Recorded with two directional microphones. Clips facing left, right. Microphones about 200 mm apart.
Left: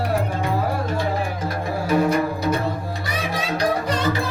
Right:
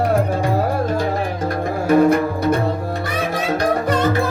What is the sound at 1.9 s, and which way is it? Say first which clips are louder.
Music: right 6 dB; 55° right (ahead or behind).